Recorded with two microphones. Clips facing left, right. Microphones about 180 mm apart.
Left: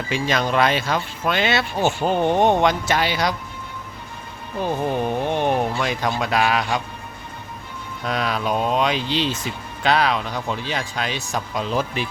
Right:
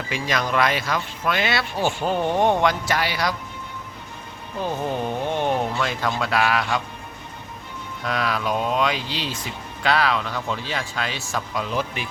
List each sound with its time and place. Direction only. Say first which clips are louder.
0.1 s speech: left 3 dB; 25° left (ahead or behind)
4.6 s speech: left 3 dB; 15° left (ahead or behind)
8.0 s speech: left 1 dB; 20° left (ahead or behind)
11.7 s speech: left 5 dB; 35° left (ahead or behind)